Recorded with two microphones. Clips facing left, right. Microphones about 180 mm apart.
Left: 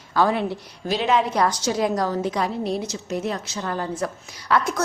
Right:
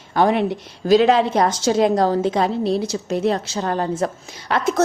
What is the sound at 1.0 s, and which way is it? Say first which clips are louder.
A woman's voice: right 4 dB; 30° right (ahead or behind).